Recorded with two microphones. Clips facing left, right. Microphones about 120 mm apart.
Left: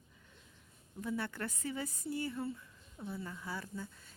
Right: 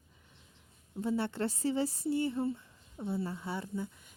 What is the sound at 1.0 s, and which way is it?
A woman's voice, 25° right (ahead or behind).